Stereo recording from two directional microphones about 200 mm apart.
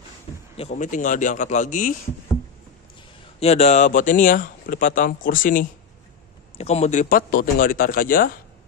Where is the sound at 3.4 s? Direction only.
30° left (ahead or behind).